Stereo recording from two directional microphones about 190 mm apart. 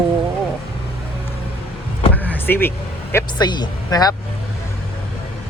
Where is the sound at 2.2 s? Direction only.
10° left (ahead or behind).